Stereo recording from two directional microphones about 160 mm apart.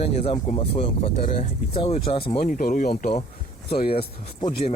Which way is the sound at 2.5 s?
60° left (ahead or behind).